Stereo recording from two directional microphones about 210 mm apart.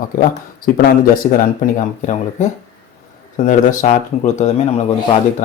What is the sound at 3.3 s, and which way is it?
Speech, 35° left (ahead or behind).